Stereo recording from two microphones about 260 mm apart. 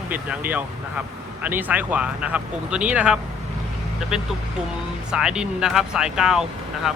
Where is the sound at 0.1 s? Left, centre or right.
Centre.